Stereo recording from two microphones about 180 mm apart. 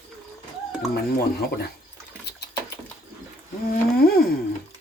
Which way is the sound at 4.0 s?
60° left (ahead or behind).